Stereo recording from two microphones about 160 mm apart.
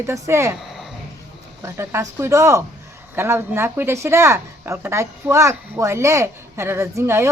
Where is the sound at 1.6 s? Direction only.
15° right (ahead or behind).